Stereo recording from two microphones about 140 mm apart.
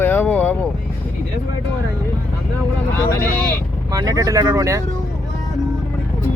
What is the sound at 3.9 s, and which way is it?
Speech, 25° right (ahead or behind).